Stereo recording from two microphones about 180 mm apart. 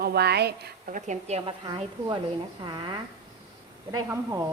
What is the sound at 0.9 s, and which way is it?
A woman's voice, 40° right (ahead or behind).